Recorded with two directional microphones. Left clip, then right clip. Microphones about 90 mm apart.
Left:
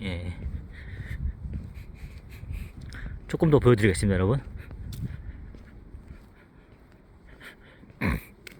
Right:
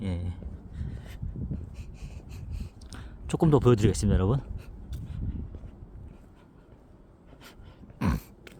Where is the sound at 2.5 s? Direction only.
25° right (ahead or behind).